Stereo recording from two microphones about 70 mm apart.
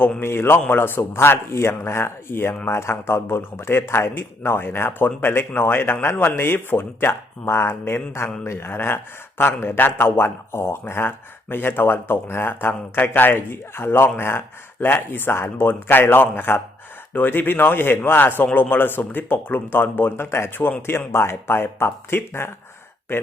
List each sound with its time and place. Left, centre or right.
0.2 s a man's voice: left